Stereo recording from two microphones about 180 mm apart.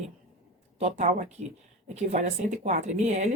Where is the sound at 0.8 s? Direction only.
40° right (ahead or behind).